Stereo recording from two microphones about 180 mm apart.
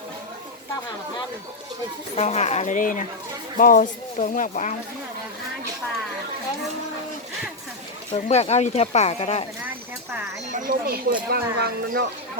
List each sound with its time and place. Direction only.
2.1 s speech: 40° left (ahead or behind)
8.1 s speech: 35° left (ahead or behind)
10.5 s speech: 50° right (ahead or behind)